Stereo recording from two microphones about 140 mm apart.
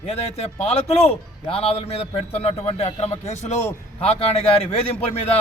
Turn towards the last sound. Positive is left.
turn(degrees=45)  # may be behind; listen again after turning